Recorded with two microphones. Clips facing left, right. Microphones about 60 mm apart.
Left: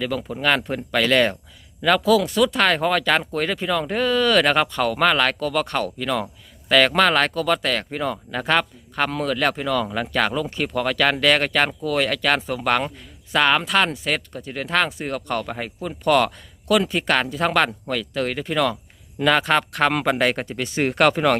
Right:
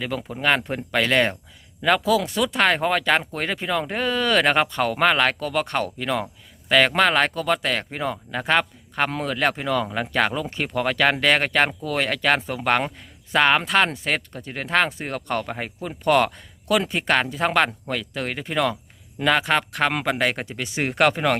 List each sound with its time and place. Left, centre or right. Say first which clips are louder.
0.0 s speech: left 1 dB; right